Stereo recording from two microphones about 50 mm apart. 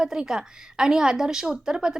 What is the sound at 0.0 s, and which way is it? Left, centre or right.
A woman's voice, centre.